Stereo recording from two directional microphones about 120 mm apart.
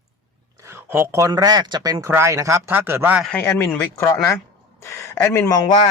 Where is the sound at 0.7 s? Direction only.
20° right (ahead or behind).